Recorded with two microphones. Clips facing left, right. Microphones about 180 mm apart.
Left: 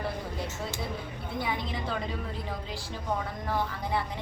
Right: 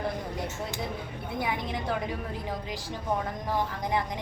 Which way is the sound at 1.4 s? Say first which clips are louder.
Right 1 dB; 20° right (ahead or behind).